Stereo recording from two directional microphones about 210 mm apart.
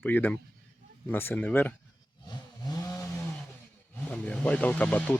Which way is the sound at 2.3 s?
15° left (ahead or behind).